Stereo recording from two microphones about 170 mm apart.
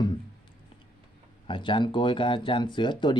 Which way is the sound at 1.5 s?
30° left (ahead or behind).